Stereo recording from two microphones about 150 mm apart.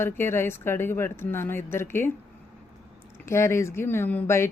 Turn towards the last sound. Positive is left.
turn(degrees=15)  # may be behind; listen again after turning